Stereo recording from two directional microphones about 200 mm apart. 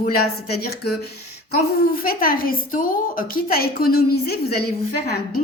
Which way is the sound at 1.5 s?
45° left (ahead or behind).